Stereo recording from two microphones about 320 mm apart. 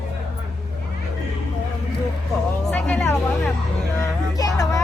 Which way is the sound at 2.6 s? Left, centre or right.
Centre.